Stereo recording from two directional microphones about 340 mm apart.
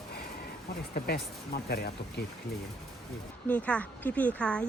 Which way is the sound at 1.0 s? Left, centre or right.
Left.